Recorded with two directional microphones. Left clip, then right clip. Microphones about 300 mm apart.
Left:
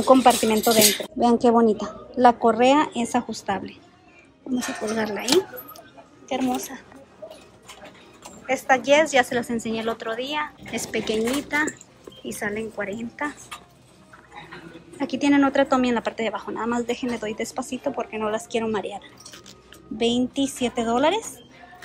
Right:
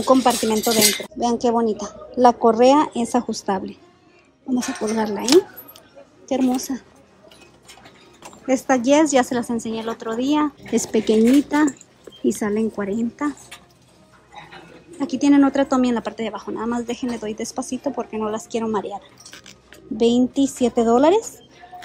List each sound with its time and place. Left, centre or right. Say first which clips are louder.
0.0 s speech: left 1 dB; centre
4.6 s speech: right 3 dB; centre
4.9 s speech: right 3 dB; centre
6.2 s a woman's voice: right 4 dB; centre
8.5 s speech: right 1 dB; centre
12.3 s speech: right 7 dB; right
15.0 s speech: right 3 dB; centre
20.2 s speech: right 5 dB; centre